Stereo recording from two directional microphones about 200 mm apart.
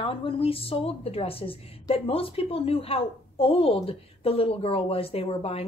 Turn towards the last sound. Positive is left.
turn(degrees=30)  # may be behind; listen again after turning